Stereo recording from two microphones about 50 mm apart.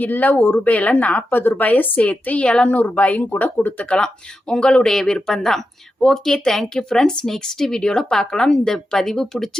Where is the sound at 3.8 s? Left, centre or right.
Centre.